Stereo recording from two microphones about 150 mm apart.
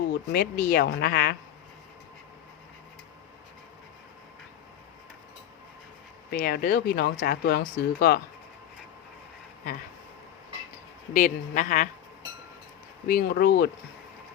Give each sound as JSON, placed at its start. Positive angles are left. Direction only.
{"t": 0.1, "sound": "speech", "side_deg": 90}
{"t": 6.3, "sound": "speech", "side_deg": 90}
{"t": 11.1, "sound": "a woman's voice", "side_deg": 60}
{"t": 13.1, "sound": "speech", "side_deg": 75}